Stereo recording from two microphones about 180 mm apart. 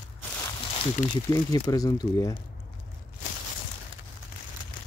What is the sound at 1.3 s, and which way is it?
Speech, 20° left (ahead or behind).